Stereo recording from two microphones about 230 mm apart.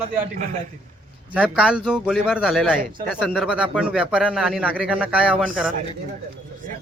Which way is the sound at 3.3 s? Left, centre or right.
Centre.